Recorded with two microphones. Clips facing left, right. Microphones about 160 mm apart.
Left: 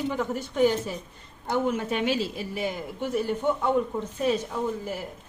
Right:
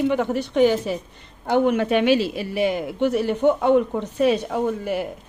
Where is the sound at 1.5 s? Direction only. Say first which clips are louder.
Right 7 dB; 70° right (ahead or behind).